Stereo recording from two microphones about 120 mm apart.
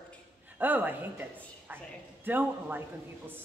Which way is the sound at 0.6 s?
15° right (ahead or behind).